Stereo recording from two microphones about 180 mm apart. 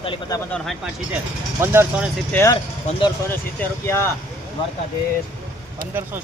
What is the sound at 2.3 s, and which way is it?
Speech, 15° left (ahead or behind).